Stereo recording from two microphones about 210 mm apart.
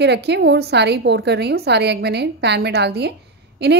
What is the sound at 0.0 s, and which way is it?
A woman's voice, 55° right (ahead or behind).